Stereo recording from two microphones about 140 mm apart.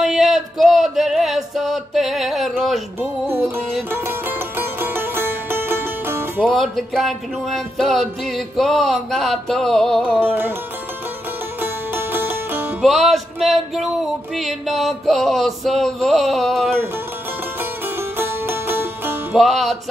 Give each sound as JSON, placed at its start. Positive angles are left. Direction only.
{"t": 0.0, "sound": "music", "side_deg": 0}
{"t": 3.3, "sound": "music", "side_deg": -15}
{"t": 6.4, "sound": "music", "side_deg": 5}
{"t": 10.2, "sound": "music", "side_deg": -15}
{"t": 11.6, "sound": "music", "side_deg": -15}
{"t": 12.8, "sound": "music", "side_deg": 0}
{"t": 17.6, "sound": "music", "side_deg": -15}
{"t": 19.3, "sound": "music", "side_deg": 0}